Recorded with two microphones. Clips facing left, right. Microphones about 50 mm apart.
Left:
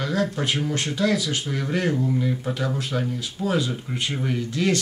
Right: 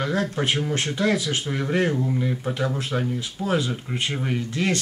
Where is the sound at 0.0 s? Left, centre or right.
Right.